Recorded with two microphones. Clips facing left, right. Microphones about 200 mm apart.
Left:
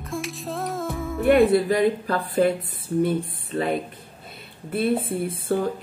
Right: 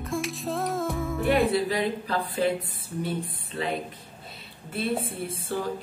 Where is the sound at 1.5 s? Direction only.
50° left (ahead or behind).